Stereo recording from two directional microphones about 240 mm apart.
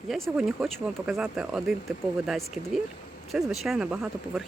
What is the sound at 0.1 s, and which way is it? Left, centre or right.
Speech, centre.